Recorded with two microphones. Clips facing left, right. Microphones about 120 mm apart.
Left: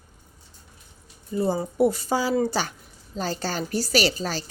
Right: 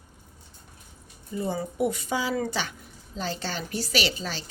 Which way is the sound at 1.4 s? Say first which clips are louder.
Left 6 dB; 35° left (ahead or behind).